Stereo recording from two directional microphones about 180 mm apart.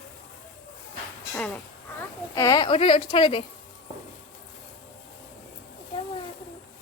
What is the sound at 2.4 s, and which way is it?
A woman's voice, 20° left (ahead or behind).